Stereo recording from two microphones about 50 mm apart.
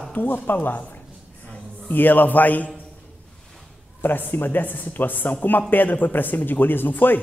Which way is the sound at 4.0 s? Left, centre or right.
Left.